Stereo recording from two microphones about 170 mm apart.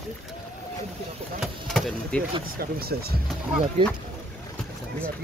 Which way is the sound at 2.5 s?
65° right (ahead or behind).